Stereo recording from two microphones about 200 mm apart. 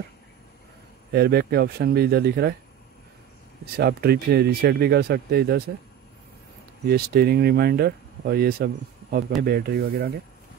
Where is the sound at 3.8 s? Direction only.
55° right (ahead or behind).